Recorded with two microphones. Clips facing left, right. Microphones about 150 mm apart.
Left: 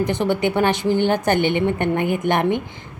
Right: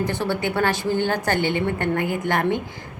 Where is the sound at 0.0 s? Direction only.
20° left (ahead or behind).